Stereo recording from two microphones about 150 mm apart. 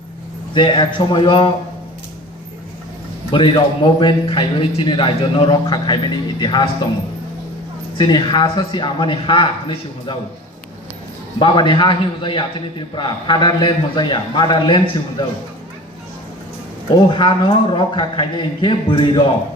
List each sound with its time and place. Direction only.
0.5 s a man's voice: 30° left (ahead or behind)
3.3 s a man's voice: 35° left (ahead or behind)
7.9 s a man's voice: 30° left (ahead or behind)
11.3 s a man's voice: 35° left (ahead or behind)
16.9 s a man's voice: 30° left (ahead or behind)